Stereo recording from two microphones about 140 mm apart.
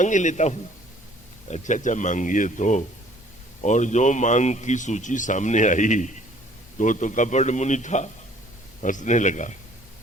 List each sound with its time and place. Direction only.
0.0 s a man's voice: 60° left (ahead or behind)